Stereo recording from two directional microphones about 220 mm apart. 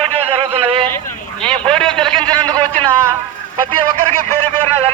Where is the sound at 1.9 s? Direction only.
5° left (ahead or behind).